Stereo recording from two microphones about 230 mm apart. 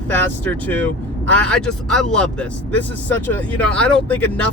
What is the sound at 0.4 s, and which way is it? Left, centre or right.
Speech, centre.